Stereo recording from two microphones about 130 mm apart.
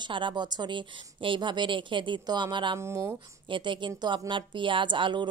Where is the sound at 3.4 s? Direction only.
40° right (ahead or behind).